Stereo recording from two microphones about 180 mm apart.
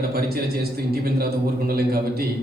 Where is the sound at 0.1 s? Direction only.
60° right (ahead or behind).